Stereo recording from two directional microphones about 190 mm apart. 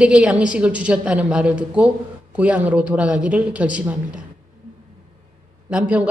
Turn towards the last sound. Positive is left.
turn(degrees=-5)  # may be behind; listen again after turning